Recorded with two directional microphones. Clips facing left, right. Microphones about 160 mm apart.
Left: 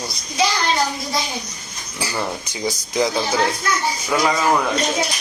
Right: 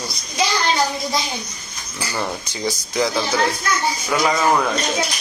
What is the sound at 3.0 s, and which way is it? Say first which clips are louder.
Speech: left 1 dB; 20° left (ahead or behind).